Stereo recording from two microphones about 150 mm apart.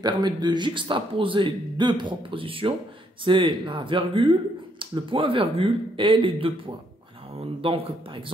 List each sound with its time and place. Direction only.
0.0 s speech: 30° right (ahead or behind)